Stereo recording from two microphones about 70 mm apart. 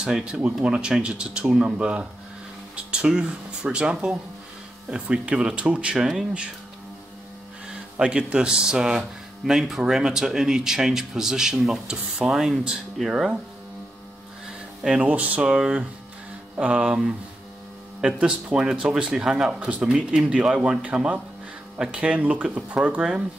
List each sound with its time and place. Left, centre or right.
0.0 s speech: centre
8.0 s speech: centre
14.8 s speech: centre